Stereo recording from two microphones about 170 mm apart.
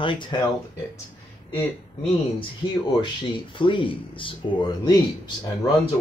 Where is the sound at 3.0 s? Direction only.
30° left (ahead or behind).